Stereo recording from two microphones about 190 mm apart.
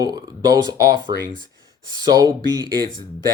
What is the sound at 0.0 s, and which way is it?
Speech, 20° right (ahead or behind).